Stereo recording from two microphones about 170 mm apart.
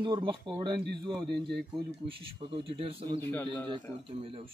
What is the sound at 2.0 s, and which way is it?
Speech, 30° right (ahead or behind).